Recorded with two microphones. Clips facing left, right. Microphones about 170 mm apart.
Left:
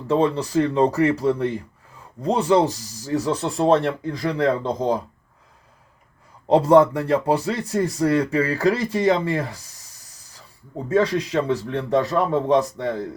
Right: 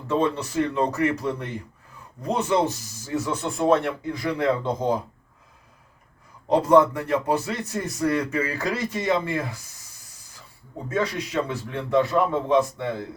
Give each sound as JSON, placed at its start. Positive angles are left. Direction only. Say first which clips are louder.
{"t": 0.1, "sound": "speech", "louder": "left 4 dB", "side_deg": 35}
{"t": 6.5, "sound": "speech", "louder": "left 3 dB", "side_deg": 30}
{"t": 10.9, "sound": "speech", "louder": "left 6 dB", "side_deg": 35}